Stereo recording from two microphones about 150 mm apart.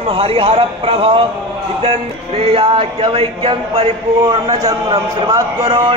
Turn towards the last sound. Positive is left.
turn(degrees=-25)  # may be behind; listen again after turning